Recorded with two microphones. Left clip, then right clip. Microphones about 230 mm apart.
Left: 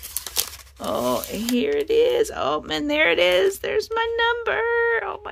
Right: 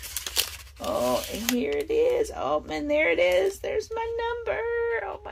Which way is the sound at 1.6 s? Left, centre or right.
Left.